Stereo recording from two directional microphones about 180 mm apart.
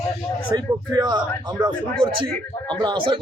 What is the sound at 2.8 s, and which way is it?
Speech, 25° right (ahead or behind).